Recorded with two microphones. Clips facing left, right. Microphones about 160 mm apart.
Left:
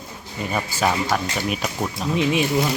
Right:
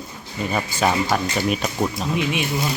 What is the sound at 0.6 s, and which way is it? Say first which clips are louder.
Speech: right 1 dB; 5° left (ahead or behind).